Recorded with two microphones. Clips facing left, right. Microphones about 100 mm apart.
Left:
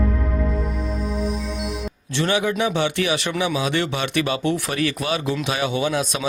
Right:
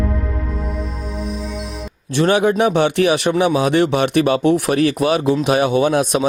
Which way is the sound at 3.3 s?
40° right (ahead or behind).